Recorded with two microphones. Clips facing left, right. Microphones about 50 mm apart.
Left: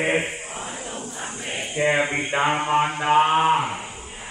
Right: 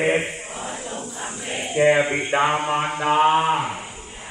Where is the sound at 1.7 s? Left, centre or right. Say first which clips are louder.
Right 4 dB; centre.